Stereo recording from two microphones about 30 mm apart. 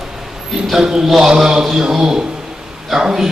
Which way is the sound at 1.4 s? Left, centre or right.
Centre.